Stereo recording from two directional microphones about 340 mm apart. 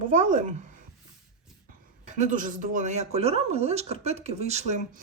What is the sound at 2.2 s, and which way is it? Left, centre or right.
Speech, right.